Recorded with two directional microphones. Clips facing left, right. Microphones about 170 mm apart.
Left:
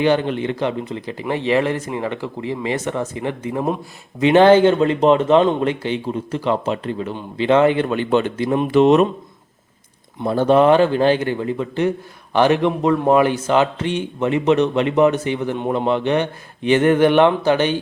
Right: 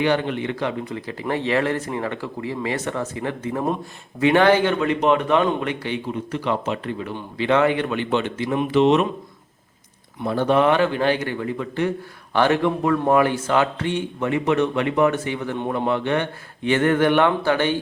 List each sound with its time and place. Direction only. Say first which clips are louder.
0.0 s speech: left 4 dB; 25° left (ahead or behind); by 9.0 s 45° left (ahead or behind)
10.2 s speech: left 4 dB; 35° left (ahead or behind)